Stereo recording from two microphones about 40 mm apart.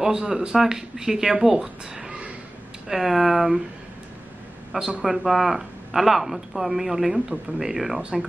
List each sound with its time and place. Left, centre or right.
0.0 s speech: centre
4.7 s speech: centre
5.0 s speech: centre